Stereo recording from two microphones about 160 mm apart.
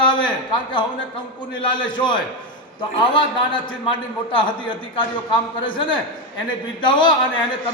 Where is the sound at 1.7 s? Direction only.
30° left (ahead or behind).